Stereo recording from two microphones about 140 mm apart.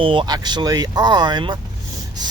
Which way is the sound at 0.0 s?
35° right (ahead or behind).